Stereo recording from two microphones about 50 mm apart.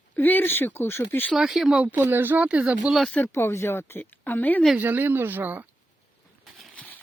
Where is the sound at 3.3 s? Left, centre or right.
Left.